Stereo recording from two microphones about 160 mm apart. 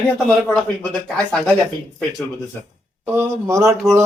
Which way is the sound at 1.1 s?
10° left (ahead or behind).